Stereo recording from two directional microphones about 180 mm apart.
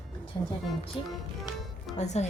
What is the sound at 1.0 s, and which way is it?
Speech, 30° left (ahead or behind).